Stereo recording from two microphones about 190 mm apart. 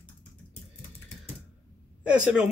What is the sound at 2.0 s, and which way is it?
Speech, 5° right (ahead or behind).